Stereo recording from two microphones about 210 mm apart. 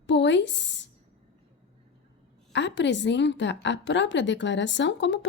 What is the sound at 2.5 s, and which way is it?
A woman's voice, 55° left (ahead or behind).